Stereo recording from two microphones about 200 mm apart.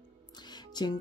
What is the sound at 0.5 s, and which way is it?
Music, 20° left (ahead or behind).